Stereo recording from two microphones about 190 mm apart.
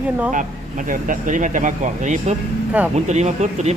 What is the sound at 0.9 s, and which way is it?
Speech, 45° right (ahead or behind).